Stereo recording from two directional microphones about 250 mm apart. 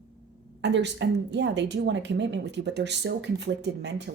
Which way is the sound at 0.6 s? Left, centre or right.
Right.